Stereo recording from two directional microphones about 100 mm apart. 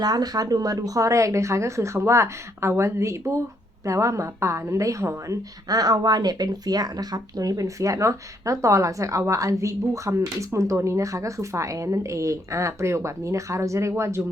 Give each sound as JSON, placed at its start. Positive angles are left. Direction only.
{"t": 0.0, "sound": "a woman's voice", "side_deg": -40}